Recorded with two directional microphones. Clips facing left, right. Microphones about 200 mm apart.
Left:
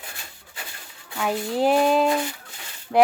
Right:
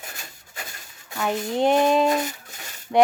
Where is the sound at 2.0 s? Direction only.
20° right (ahead or behind).